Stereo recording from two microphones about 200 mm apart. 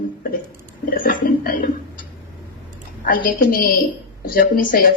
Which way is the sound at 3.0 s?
45° left (ahead or behind).